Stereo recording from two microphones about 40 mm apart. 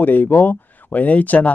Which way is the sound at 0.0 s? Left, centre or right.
Left.